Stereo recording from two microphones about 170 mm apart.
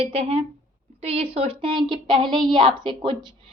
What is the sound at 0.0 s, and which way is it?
A woman's voice, 35° right (ahead or behind).